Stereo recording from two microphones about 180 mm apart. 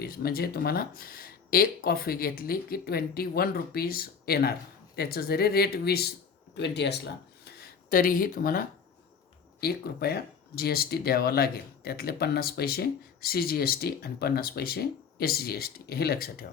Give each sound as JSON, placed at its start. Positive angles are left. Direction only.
{"t": 0.0, "sound": "speech", "side_deg": 60}
{"t": 7.9, "sound": "speech", "side_deg": 50}